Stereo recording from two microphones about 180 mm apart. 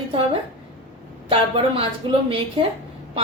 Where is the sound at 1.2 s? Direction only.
30° right (ahead or behind).